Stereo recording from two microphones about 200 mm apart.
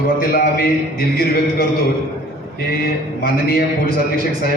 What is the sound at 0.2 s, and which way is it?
A man's voice, 50° left (ahead or behind).